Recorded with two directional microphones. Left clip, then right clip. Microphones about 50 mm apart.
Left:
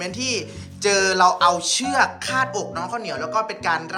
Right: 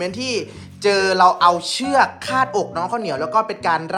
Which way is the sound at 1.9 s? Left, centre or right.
Left.